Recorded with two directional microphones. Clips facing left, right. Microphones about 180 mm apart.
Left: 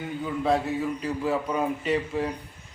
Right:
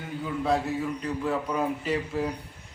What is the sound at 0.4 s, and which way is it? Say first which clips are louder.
A man's voice: left 2 dB; centre (ahead or behind).